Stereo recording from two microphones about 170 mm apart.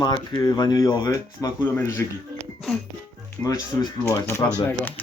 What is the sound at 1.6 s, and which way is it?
Speech, 10° left (ahead or behind).